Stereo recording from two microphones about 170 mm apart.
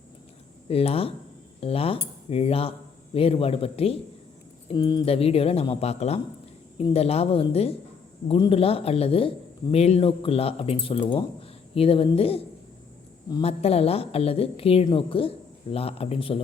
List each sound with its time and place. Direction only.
0.7 s a man's voice: 35° left (ahead or behind)
13.4 s a man's voice: 35° left (ahead or behind)